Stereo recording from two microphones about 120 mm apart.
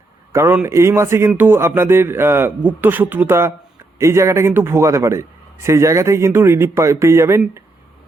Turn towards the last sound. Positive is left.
turn(degrees=-20)  # may be behind; listen again after turning